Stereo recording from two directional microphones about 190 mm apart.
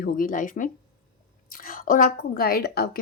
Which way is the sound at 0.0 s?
45° left (ahead or behind).